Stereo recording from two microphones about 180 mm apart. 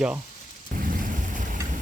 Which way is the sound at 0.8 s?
50° right (ahead or behind).